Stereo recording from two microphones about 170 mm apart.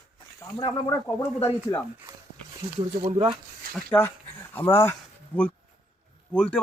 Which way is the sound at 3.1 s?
30° right (ahead or behind).